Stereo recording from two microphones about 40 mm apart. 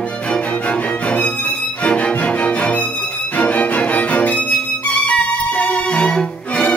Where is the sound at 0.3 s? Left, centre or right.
Left.